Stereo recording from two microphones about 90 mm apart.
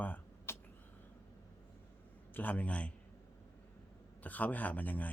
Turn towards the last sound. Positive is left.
turn(degrees=20)  # may be behind; listen again after turning